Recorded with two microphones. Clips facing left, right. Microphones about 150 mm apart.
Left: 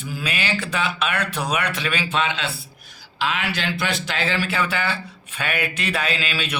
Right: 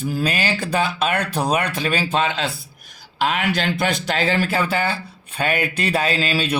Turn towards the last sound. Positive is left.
turn(degrees=-35)  # may be behind; listen again after turning